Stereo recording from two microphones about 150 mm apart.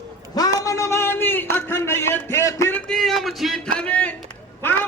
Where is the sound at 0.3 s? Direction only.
25° left (ahead or behind).